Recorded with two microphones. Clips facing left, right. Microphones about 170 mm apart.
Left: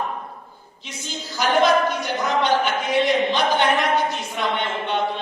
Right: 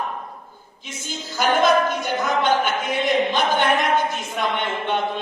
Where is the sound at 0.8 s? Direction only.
50° right (ahead or behind).